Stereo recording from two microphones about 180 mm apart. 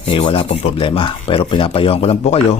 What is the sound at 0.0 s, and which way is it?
Speech, 30° left (ahead or behind).